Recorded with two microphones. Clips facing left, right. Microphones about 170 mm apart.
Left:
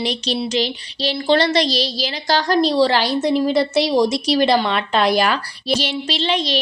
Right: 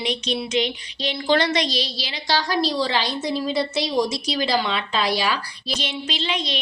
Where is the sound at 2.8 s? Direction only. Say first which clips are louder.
Left 7 dB; 75° left (ahead or behind); by 5.4 s 55° left (ahead or behind).